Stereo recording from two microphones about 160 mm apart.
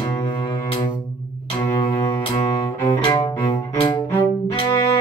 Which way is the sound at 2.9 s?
30° left (ahead or behind).